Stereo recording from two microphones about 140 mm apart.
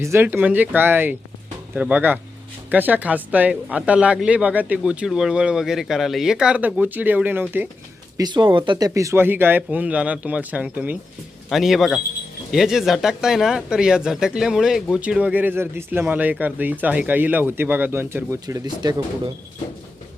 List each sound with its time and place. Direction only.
0.0 s speech: 15° right (ahead or behind)
8.2 s speech: 30° right (ahead or behind)
8.9 s a man's voice: 20° right (ahead or behind)
18.4 s speech: 30° right (ahead or behind)